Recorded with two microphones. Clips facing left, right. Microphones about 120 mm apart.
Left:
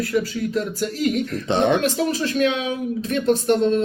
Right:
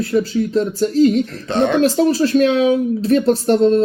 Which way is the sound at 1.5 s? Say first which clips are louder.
Right 1 dB; 20° left (ahead or behind).